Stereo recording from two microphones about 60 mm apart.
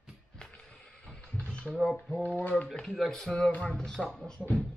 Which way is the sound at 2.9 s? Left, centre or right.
Centre.